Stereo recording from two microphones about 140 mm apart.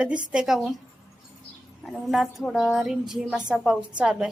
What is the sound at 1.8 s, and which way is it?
A woman's voice, centre (ahead or behind).